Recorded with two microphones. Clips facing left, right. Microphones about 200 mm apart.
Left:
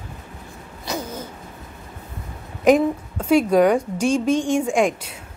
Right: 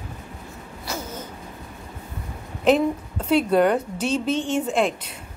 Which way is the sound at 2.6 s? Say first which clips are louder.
Left 3 dB; 10° left (ahead or behind).